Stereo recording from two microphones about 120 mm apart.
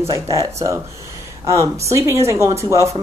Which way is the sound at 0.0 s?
25° right (ahead or behind).